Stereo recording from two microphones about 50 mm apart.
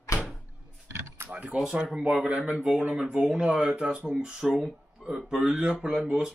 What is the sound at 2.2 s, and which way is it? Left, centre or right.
Speech, right.